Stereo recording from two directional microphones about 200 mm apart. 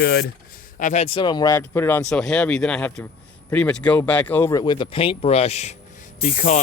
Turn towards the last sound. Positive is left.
turn(degrees=35)  # may be behind; listen again after turning